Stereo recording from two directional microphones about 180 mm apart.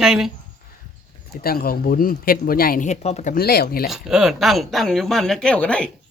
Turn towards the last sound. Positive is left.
turn(degrees=5)  # may be behind; listen again after turning